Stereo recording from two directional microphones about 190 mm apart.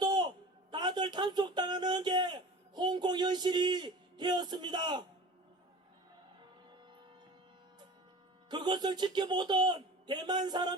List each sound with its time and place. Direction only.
0.0 s a man's voice: 25° right (ahead or behind)
8.4 s a man's voice: 25° right (ahead or behind)